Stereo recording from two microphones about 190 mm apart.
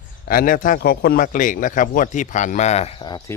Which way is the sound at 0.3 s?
50° left (ahead or behind).